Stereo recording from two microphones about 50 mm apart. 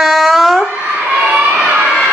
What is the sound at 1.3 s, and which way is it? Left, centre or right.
Crowd, right.